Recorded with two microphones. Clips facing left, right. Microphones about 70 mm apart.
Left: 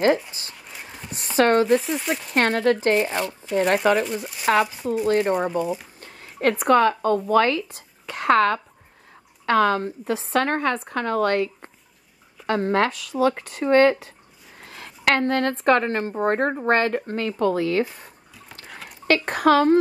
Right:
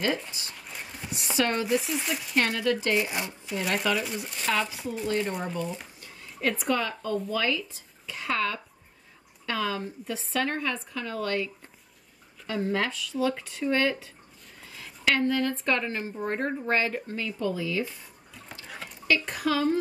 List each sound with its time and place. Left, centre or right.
0.5 s a sound: centre
1.3 s speech: left
1.8 s speech: centre
2.2 s speech: left
5.5 s speech: centre
5.9 s a sound: left
6.6 s a woman's voice: left